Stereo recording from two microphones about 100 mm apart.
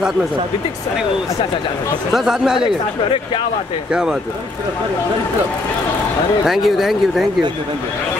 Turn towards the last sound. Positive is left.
turn(degrees=0)  # may be behind; listen again after turning